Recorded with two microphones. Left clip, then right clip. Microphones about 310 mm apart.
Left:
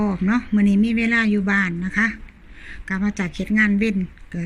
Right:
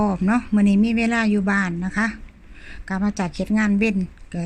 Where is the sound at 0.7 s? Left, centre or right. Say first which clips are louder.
Even; right.